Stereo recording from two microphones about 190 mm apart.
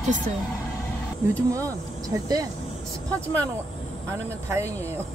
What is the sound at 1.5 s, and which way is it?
Speech, 20° right (ahead or behind).